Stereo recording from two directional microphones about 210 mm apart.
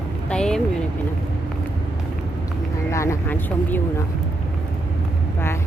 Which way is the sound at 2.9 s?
15° left (ahead or behind).